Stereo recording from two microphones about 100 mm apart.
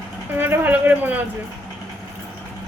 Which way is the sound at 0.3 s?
20° right (ahead or behind).